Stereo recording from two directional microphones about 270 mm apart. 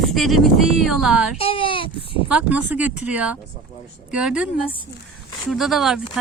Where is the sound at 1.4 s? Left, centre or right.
Centre.